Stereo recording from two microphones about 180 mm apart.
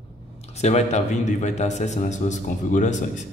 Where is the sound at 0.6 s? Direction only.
40° left (ahead or behind).